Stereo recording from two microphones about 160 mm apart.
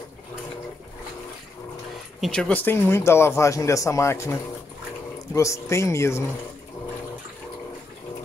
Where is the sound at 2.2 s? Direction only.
5° left (ahead or behind).